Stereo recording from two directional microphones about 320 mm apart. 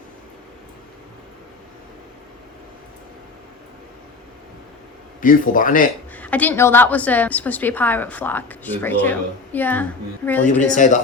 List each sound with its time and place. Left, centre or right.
5.2 s speech: left
6.1 s a woman's voice: centre
10.4 s speech: left